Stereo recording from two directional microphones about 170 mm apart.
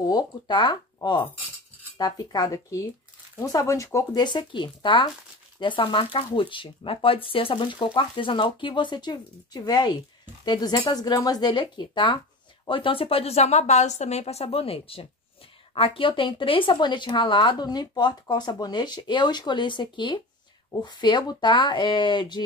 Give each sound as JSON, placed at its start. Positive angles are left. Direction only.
{"t": 0.0, "sound": "speech", "side_deg": 25}